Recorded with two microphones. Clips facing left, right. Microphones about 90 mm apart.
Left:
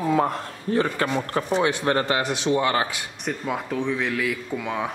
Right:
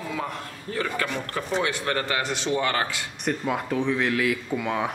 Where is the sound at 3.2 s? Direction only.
Centre (ahead or behind).